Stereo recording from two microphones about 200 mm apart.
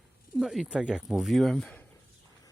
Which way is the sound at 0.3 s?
Centre (ahead or behind).